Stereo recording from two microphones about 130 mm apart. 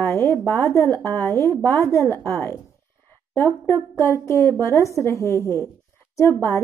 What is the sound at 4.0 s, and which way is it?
A woman's voice, 20° left (ahead or behind).